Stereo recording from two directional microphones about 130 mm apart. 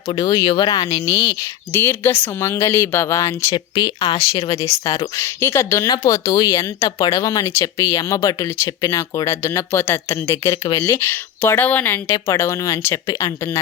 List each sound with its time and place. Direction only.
0.1 s speech: 30° left (ahead or behind)
1.7 s speech: 15° left (ahead or behind)
3.5 s speech: 40° left (ahead or behind)